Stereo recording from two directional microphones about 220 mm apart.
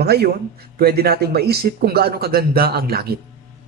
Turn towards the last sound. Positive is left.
turn(degrees=-45)  # may be behind; listen again after turning